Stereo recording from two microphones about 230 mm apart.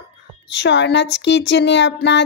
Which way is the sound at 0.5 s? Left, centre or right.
Left.